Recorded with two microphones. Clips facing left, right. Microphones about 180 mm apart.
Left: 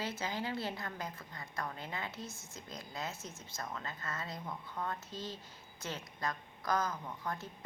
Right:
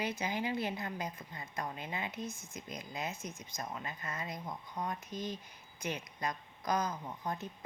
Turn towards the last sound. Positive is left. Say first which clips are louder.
# right 1 dB
turn(degrees=-20)  # may be behind; listen again after turning